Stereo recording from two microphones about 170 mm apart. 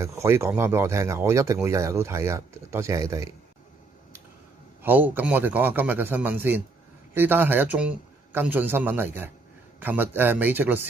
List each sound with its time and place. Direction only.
0.0 s speech: 15° right (ahead or behind)
4.8 s speech: 10° right (ahead or behind)